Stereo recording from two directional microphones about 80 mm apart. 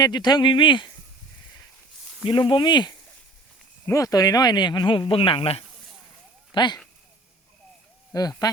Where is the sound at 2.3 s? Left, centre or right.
Left.